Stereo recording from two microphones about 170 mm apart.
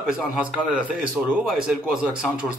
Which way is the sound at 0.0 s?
5° right (ahead or behind).